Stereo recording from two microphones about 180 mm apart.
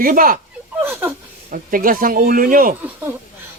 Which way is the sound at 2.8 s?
10° right (ahead or behind).